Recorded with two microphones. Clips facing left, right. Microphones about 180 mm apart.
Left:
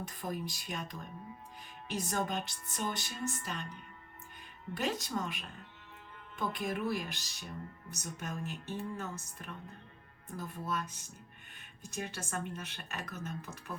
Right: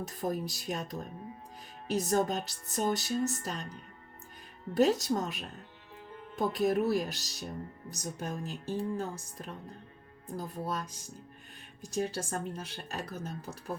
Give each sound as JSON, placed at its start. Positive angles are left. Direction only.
{"t": 0.2, "sound": "speech", "side_deg": -40}